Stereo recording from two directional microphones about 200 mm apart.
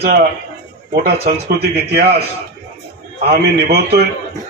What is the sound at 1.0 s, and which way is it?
A man's voice, 50° right (ahead or behind).